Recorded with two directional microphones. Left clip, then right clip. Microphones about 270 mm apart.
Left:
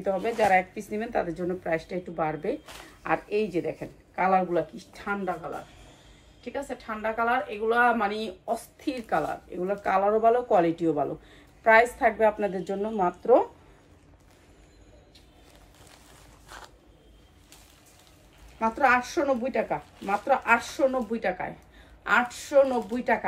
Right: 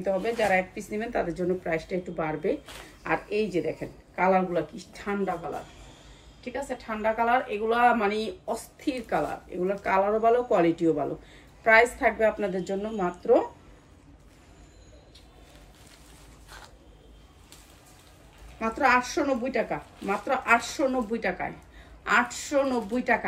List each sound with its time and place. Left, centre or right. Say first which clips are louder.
0.0 s speech: left 1 dB; centre
6.4 s speech: right 1 dB; centre
16.4 s a sound: left 2 dB; left
18.6 s speech: left 1 dB; centre